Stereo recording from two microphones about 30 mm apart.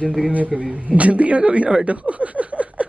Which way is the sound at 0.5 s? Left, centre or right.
Centre.